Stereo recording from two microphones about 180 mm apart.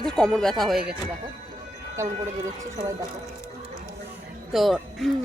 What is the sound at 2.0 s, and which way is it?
Speech, 15° right (ahead or behind).